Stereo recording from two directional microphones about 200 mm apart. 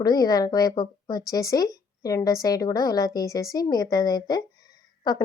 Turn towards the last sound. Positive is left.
turn(degrees=20)  # may be behind; listen again after turning